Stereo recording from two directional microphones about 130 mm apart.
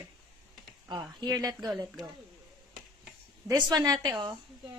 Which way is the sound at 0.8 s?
35° right (ahead or behind).